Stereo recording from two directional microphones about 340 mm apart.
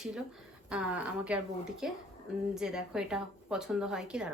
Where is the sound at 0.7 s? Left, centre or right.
Centre.